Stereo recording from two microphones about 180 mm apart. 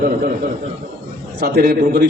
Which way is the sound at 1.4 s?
60° right (ahead or behind).